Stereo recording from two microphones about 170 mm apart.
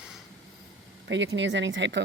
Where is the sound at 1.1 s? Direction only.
90° right.